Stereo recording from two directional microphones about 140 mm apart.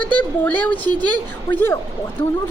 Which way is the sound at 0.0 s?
10° left (ahead or behind).